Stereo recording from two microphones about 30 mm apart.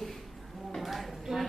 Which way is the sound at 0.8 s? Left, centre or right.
Centre.